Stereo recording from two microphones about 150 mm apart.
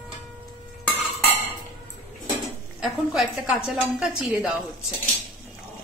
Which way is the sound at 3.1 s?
5° right (ahead or behind).